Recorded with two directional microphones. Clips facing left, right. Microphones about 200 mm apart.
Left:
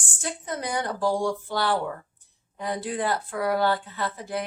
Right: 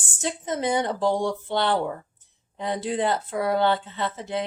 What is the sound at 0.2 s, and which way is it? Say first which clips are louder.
Speech: right 5 dB; 20° right (ahead or behind).